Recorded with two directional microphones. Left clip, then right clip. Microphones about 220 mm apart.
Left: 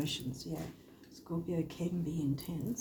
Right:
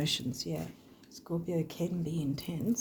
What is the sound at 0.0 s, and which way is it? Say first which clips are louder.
Speech: right 5 dB; 50° right (ahead or behind).